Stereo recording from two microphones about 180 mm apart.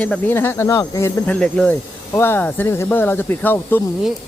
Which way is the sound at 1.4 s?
5° left (ahead or behind).